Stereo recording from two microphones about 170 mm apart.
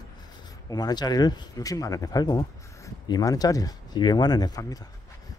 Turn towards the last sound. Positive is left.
turn(degrees=20)  # may be behind; listen again after turning